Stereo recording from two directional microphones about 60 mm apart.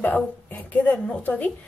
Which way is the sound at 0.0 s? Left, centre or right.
Left.